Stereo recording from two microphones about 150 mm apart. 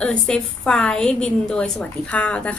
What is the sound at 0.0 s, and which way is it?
A woman's voice, 5° left (ahead or behind).